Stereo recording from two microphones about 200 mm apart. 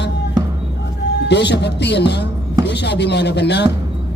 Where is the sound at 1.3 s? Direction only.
60° left (ahead or behind).